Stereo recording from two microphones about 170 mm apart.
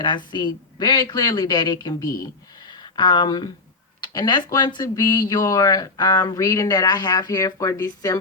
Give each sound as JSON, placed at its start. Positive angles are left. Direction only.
{"t": 0.0, "sound": "speech", "side_deg": 25}